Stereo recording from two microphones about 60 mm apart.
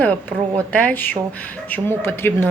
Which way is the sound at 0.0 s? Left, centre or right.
Left.